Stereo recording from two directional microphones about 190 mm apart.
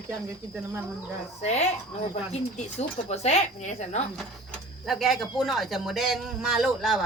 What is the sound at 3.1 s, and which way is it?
Speech, 35° left (ahead or behind).